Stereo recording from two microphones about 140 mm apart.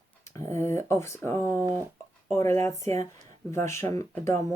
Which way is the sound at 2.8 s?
50° right (ahead or behind).